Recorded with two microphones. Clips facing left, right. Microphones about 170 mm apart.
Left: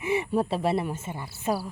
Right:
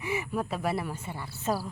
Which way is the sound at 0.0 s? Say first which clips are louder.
Left 6 dB; 30° left (ahead or behind).